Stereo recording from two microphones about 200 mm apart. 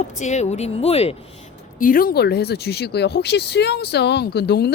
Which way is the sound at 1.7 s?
45° left (ahead or behind).